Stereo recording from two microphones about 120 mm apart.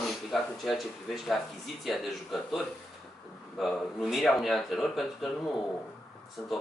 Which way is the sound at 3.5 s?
Centre (ahead or behind).